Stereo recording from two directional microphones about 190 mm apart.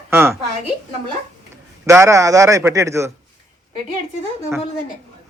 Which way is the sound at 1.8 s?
15° right (ahead or behind).